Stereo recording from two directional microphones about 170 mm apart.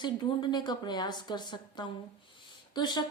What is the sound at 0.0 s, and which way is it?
A woman's voice, 25° left (ahead or behind).